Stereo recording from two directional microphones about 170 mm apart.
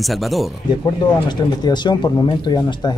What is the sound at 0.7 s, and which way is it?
Speech, 25° left (ahead or behind).